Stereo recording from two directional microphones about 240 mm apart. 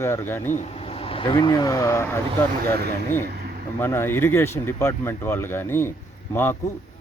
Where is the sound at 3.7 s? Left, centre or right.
Centre.